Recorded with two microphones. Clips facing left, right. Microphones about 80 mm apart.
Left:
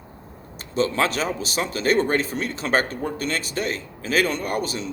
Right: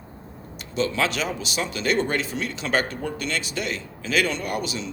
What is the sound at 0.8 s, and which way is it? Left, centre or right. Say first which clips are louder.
A man's voice: left 2 dB; left.